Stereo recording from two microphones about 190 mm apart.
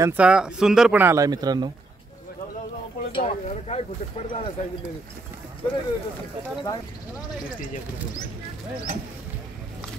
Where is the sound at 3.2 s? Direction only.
35° left (ahead or behind).